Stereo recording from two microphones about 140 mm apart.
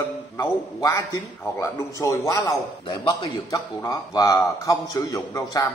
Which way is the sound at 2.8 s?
35° left (ahead or behind).